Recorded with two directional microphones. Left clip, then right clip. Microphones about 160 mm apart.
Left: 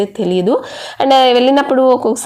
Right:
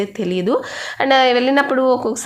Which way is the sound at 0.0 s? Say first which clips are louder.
Left 6 dB; 15° left (ahead or behind).